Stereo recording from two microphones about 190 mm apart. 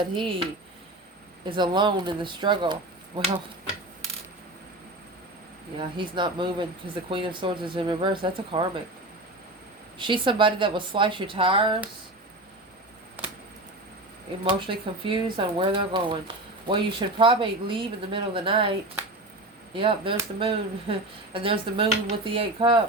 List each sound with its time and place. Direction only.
0.0 s speech: 25° right (ahead or behind)
1.5 s speech: 25° right (ahead or behind)
5.7 s speech: 25° right (ahead or behind)
10.0 s speech: 25° right (ahead or behind)
14.4 s speech: 25° right (ahead or behind)
19.7 s speech: 25° right (ahead or behind)